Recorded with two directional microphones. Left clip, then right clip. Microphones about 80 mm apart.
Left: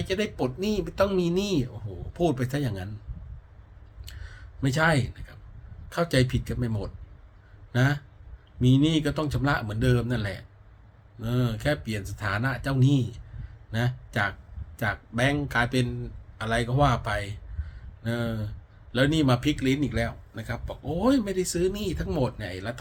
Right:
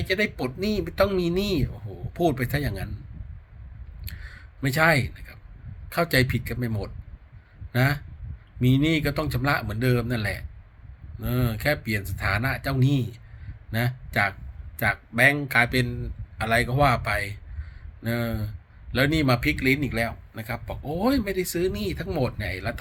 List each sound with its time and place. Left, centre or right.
0.0 s speech: left
4.0 s a sound: left
5.9 s speech: left
16.4 s a man's voice: left
19.1 s speech: left